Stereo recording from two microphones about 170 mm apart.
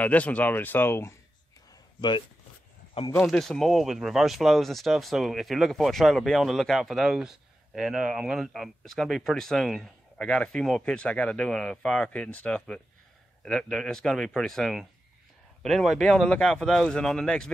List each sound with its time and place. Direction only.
0.0 s speech: 10° left (ahead or behind)
2.0 s speech: 25° left (ahead or behind)
3.2 s speech: 5° left (ahead or behind)